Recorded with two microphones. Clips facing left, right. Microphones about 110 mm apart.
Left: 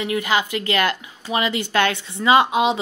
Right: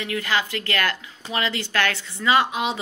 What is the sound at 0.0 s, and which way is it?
A woman's voice, 20° left (ahead or behind).